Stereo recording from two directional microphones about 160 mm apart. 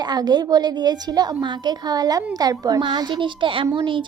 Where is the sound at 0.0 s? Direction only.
25° right (ahead or behind).